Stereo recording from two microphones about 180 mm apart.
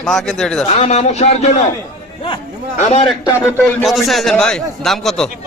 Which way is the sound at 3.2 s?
15° left (ahead or behind).